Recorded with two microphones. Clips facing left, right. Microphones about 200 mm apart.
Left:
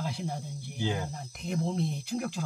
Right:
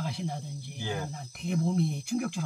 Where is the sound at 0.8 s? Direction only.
20° left (ahead or behind).